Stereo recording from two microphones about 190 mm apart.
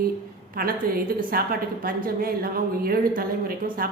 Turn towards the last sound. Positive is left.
turn(degrees=-50)  # may be behind; listen again after turning